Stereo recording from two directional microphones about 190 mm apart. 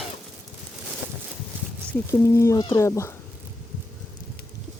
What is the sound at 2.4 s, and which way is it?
Speech, 15° left (ahead or behind).